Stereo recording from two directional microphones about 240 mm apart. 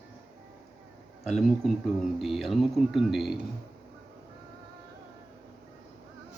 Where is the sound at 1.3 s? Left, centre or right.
Centre.